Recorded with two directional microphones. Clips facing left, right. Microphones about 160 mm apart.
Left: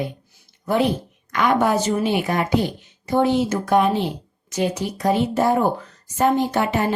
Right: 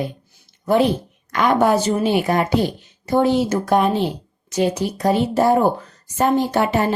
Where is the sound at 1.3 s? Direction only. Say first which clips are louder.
Right 2 dB; 35° right (ahead or behind).